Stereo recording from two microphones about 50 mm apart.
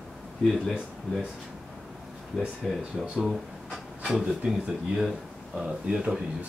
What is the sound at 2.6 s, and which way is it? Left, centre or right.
Speech, centre.